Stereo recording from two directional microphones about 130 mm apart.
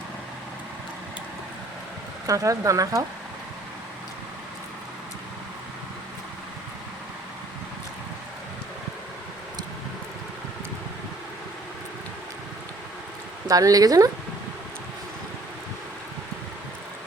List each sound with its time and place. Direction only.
2.2 s speech: 25° right (ahead or behind)
13.5 s speech: 30° right (ahead or behind)